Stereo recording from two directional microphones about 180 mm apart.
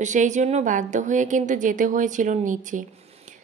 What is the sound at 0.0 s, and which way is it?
A woman's voice, 40° right (ahead or behind).